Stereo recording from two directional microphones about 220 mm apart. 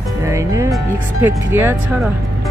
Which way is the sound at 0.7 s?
10° right (ahead or behind).